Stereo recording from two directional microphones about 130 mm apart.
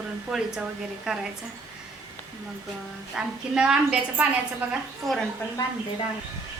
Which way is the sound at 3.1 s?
5° right (ahead or behind).